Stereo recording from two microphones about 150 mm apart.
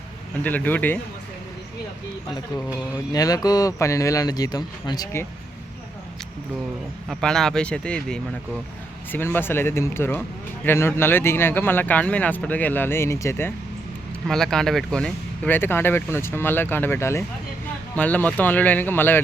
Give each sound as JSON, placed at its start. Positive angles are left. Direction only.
{"t": 0.4, "sound": "speech", "side_deg": 10}
{"t": 3.1, "sound": "speech", "side_deg": 25}
{"t": 7.1, "sound": "speech", "side_deg": 5}
{"t": 14.3, "sound": "speech", "side_deg": 5}